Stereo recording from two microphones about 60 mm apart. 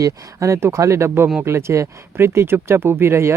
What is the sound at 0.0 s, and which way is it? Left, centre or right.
Speech, right.